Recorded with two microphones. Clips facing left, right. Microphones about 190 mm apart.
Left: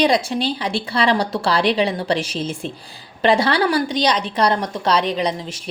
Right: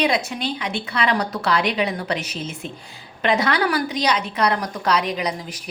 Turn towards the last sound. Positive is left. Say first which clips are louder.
# left 4 dB
turn(degrees=25)  # may be behind; listen again after turning